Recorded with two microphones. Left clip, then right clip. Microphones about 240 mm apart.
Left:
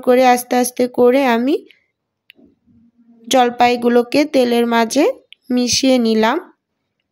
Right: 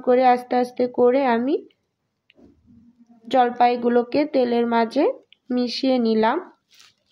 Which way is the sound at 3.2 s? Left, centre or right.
Left.